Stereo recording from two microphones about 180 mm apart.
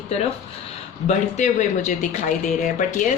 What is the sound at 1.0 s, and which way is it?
Speech, 40° left (ahead or behind).